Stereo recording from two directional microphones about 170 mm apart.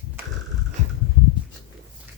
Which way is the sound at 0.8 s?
45° right (ahead or behind).